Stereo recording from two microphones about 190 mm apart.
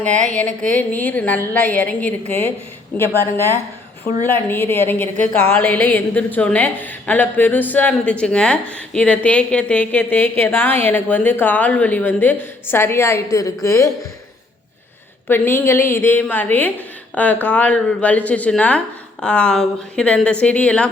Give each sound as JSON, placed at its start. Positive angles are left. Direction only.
{"t": 0.3, "sound": "a woman's voice", "side_deg": 5}
{"t": 15.3, "sound": "a woman's voice", "side_deg": 10}